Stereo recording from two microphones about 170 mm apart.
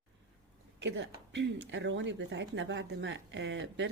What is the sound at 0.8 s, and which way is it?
Speech, 90° right.